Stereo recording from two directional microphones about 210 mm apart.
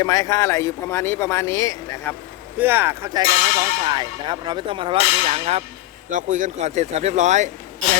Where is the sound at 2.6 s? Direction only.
10° right (ahead or behind).